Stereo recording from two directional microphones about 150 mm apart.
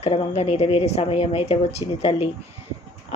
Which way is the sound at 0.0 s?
45° left (ahead or behind).